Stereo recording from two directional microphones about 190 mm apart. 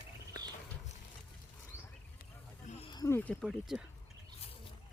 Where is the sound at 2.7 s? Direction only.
30° left (ahead or behind); by 3.9 s centre (ahead or behind).